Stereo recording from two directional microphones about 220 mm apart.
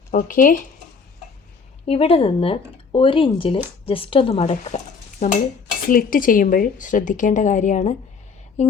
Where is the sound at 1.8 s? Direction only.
25° left (ahead or behind).